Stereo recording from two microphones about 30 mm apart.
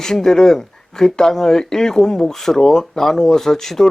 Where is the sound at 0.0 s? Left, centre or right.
Centre.